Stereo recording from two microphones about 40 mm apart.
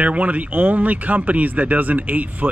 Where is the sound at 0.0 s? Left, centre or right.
Right.